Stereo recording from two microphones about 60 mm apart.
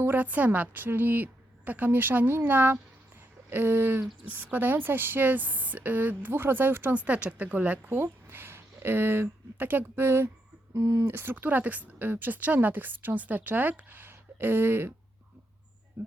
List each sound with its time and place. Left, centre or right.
0.0 s speech: right
4.3 s speech: right
6.9 s a woman's voice: right
7.9 s speech: right
10.8 s speech: right
11.0 s speech: right